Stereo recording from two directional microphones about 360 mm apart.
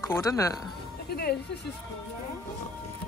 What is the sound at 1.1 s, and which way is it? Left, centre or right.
Speech, left.